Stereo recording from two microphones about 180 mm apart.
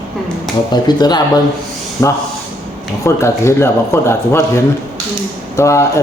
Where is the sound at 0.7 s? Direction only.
25° left (ahead or behind).